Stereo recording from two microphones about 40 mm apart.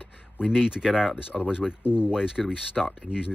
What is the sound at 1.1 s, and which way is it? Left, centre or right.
Speech, right.